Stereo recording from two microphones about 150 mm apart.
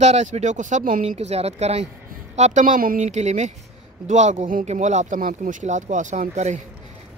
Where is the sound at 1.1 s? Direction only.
45° right (ahead or behind).